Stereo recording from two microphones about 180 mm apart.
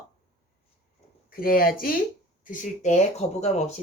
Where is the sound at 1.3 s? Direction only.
55° left (ahead or behind); by 3.6 s 35° left (ahead or behind).